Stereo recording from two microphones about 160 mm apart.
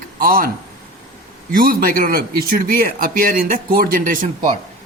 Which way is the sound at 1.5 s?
65° right (ahead or behind).